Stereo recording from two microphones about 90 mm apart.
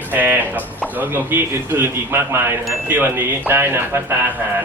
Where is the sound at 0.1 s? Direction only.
20° right (ahead or behind).